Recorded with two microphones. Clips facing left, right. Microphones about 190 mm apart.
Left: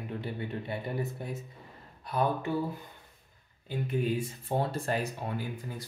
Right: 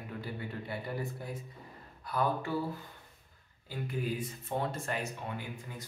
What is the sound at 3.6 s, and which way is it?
Speech, 25° left (ahead or behind).